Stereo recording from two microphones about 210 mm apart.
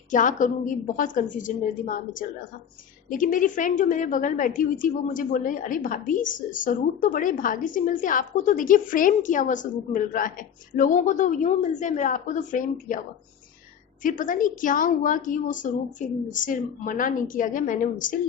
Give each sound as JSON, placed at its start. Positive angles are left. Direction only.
{"t": 0.1, "sound": "a woman's voice", "side_deg": 35}
{"t": 14.0, "sound": "a woman's voice", "side_deg": 40}